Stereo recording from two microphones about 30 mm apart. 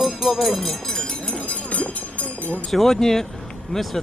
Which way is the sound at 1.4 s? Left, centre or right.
Left.